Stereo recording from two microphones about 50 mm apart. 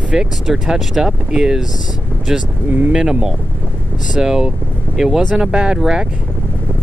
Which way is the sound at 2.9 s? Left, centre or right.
Centre.